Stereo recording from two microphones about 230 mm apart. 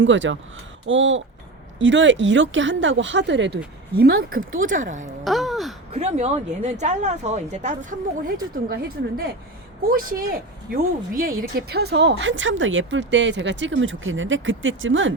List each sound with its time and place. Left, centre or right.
0.0 s speech: right
5.2 s a sound: centre
5.9 s speech: right